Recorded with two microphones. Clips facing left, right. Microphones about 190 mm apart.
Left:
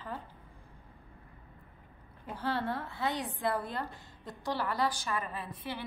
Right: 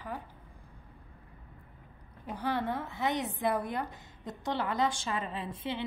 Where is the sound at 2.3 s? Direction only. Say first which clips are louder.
Right 1 dB; 15° right (ahead or behind).